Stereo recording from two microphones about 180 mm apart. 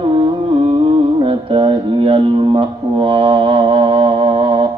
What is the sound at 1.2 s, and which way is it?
Speech, 30° right (ahead or behind).